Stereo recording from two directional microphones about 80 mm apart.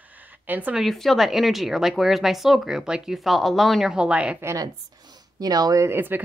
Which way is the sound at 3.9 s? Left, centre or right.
Centre.